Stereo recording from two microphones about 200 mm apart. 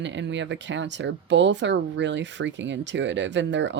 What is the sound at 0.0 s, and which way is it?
Speech, 65° right (ahead or behind).